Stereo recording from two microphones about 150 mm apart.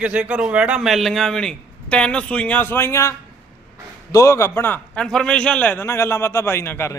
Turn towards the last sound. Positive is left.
turn(degrees=15)  # may be behind; listen again after turning